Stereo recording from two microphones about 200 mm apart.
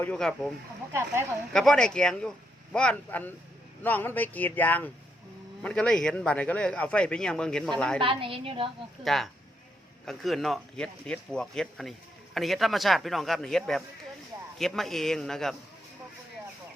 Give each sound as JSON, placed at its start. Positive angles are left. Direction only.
{"t": 0.0, "sound": "speech", "side_deg": 5}
{"t": 1.5, "sound": "speech", "side_deg": 5}
{"t": 7.9, "sound": "a woman's voice", "side_deg": -25}
{"t": 9.0, "sound": "speech", "side_deg": 0}